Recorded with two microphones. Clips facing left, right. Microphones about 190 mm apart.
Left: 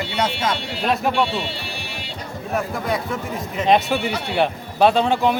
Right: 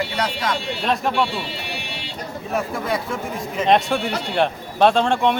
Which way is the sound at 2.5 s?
Centre (ahead or behind).